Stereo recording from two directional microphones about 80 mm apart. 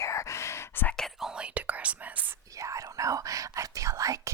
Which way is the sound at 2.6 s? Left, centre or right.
Right.